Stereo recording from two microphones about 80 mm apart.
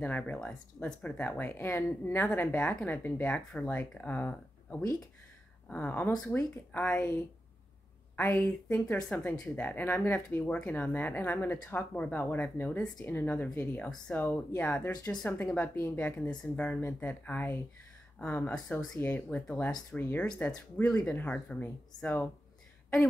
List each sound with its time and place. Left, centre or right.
0.0 s speech: left
0.4 s speech: centre
8.2 s speech: left
16.1 s speech: centre
16.8 s speech: left